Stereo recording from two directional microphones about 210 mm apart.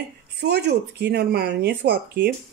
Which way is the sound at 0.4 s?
50° right (ahead or behind).